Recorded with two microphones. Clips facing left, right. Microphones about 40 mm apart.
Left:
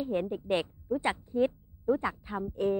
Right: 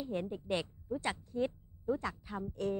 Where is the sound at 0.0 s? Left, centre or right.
Left.